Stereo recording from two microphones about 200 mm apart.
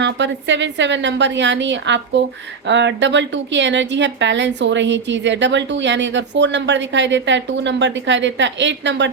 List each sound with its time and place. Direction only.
0.0 s a woman's voice: 65° right (ahead or behind)